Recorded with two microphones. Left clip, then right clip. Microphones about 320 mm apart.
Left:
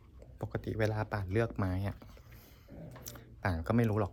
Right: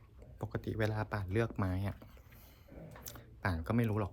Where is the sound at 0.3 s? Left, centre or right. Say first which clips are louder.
Left 3 dB; centre.